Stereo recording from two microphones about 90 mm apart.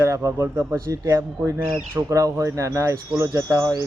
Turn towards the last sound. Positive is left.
turn(degrees=-35)  # may be behind; listen again after turning